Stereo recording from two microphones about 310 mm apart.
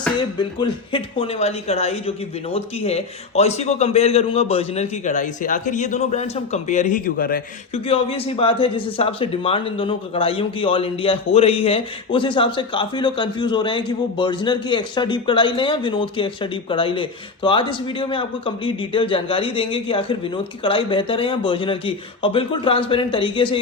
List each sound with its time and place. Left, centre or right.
0.2 s speech: centre